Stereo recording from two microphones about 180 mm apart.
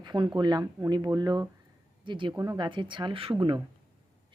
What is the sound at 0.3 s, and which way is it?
A woman's voice, 25° right (ahead or behind).